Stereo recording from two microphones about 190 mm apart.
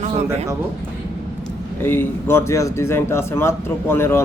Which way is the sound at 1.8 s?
10° left (ahead or behind).